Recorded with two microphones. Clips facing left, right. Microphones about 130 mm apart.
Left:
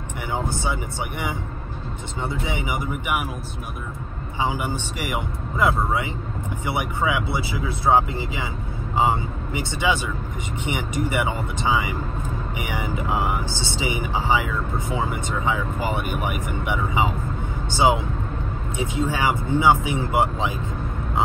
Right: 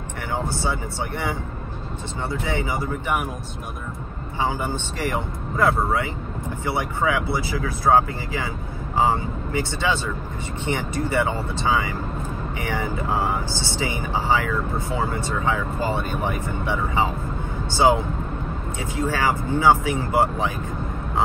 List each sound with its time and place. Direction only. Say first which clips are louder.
0.3 s music: even; 20° left (ahead or behind)
2.2 s speech: right 2 dB; 20° left (ahead or behind)
4.4 s speech: even; 15° left (ahead or behind)